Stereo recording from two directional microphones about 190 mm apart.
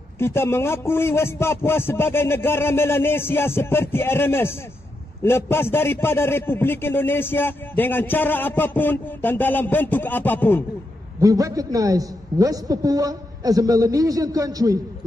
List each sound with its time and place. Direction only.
0.2 s a man's voice: 15° left (ahead or behind)
11.1 s a man's voice: 20° right (ahead or behind)